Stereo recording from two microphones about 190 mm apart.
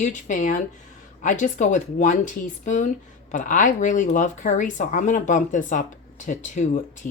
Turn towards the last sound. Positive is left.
turn(degrees=40)  # may be behind; listen again after turning